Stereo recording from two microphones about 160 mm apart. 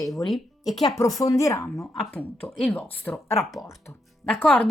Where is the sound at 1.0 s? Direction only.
20° left (ahead or behind).